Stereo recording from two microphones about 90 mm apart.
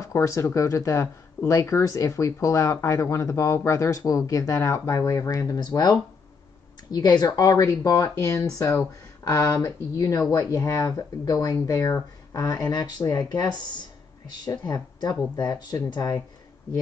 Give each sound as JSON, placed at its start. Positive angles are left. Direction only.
{"t": 0.0, "sound": "speech", "side_deg": 35}